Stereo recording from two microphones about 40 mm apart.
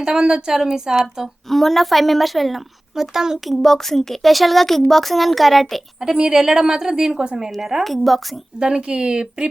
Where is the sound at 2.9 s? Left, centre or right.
Centre.